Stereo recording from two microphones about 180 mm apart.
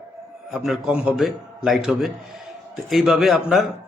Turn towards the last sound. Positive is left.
turn(degrees=0)  # may be behind; listen again after turning